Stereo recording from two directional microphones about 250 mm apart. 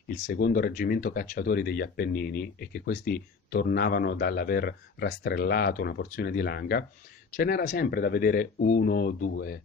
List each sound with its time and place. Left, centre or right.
0.3 s speech: left